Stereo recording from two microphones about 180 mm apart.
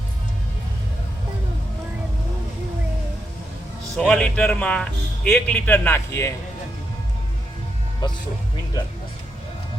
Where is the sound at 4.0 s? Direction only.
5° left (ahead or behind).